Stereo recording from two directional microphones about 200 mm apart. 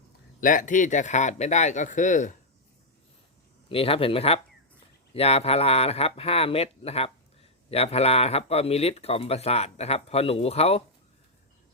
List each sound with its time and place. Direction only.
0.3 s speech: 40° left (ahead or behind)
3.7 s speech: 30° left (ahead or behind)